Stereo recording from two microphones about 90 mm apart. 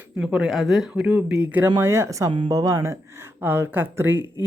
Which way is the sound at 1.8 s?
30° right (ahead or behind).